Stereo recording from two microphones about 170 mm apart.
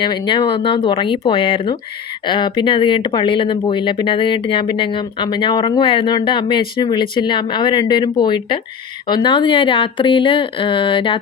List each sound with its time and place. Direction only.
0.0 s speech: 25° left (ahead or behind)